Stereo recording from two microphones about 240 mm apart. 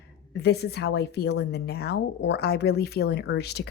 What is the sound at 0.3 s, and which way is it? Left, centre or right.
A woman's voice, left.